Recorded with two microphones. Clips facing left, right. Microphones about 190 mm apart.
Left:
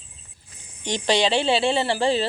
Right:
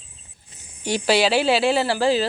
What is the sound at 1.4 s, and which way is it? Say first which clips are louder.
Speech: right 2 dB; 25° left (ahead or behind).